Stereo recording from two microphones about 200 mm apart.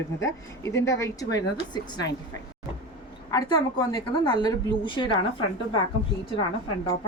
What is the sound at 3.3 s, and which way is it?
A woman's voice, 20° left (ahead or behind).